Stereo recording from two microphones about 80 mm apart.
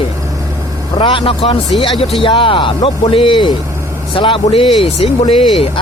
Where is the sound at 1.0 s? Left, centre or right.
Left.